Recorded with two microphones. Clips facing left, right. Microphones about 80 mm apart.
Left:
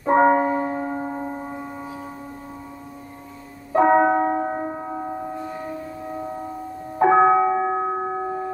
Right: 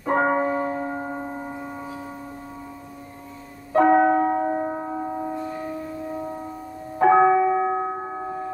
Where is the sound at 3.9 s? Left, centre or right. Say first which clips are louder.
Even; left.